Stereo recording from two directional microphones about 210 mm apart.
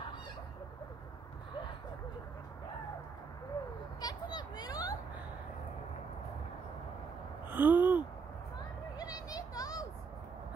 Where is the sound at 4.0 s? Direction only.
20° left (ahead or behind).